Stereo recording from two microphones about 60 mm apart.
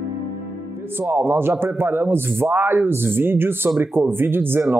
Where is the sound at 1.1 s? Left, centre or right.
Right.